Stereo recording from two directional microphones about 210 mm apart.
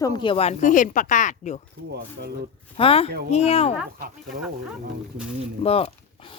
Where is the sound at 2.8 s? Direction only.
25° left (ahead or behind).